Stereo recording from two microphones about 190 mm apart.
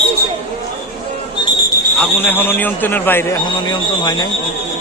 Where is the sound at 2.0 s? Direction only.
10° left (ahead or behind).